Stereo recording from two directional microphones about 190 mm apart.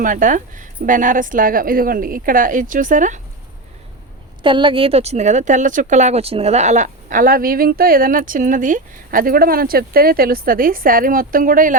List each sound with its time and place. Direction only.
0.0 s speech: 45° right (ahead or behind)
4.4 s speech: 25° right (ahead or behind); by 11.8 s 45° right (ahead or behind)